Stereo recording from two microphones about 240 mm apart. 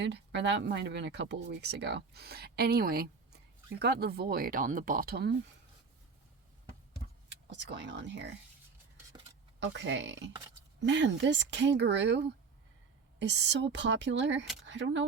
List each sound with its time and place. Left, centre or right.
0.0 s speech: right
7.3 s speech: right
9.6 s speech: right